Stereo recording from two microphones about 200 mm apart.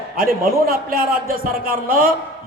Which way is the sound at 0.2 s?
45° right (ahead or behind).